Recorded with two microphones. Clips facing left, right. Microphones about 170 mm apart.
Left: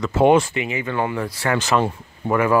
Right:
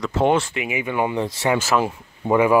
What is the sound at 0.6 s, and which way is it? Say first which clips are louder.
Speech: even; 10° right (ahead or behind).